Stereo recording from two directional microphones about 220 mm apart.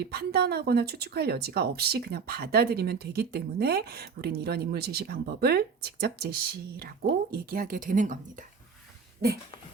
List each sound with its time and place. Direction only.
0.0 s speech: 45° right (ahead or behind)